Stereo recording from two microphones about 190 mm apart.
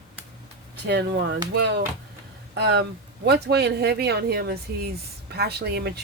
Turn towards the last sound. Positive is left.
turn(degrees=-60)  # may be behind; listen again after turning